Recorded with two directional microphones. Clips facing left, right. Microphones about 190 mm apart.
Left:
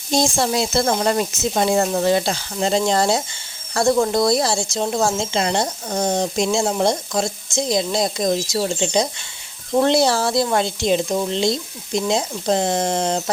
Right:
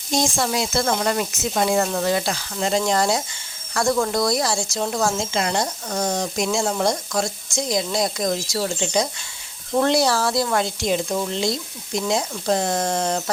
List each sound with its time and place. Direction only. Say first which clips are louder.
0.1 s speech: left 3 dB; 30° left (ahead or behind)